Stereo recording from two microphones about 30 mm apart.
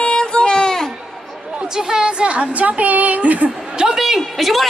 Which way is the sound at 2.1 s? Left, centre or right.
Right.